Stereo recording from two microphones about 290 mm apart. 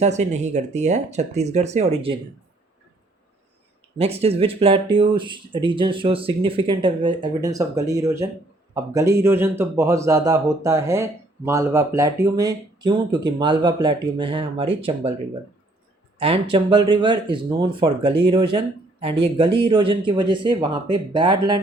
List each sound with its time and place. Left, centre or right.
0.0 s speech: right
3.9 s speech: right
16.1 s speech: centre